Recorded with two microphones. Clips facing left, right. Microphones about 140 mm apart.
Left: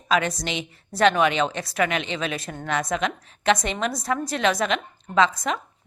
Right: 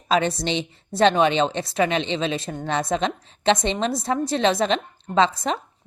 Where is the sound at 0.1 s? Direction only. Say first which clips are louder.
Right 2 dB; 30° right (ahead or behind).